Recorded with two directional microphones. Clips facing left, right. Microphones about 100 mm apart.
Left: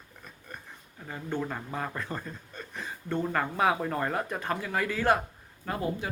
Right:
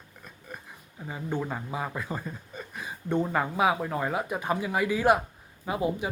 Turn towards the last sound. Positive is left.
turn(degrees=-15)  # may be behind; listen again after turning